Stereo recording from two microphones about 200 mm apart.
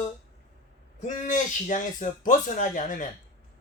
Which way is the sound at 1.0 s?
40° left (ahead or behind).